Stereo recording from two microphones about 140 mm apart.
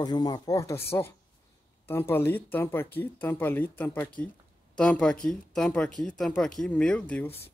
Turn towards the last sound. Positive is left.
turn(degrees=10)  # may be behind; listen again after turning